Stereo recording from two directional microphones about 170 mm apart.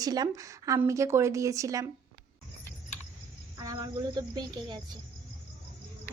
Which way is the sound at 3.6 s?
20° right (ahead or behind).